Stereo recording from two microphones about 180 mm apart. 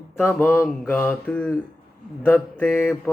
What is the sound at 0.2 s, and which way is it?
Speech, 10° left (ahead or behind).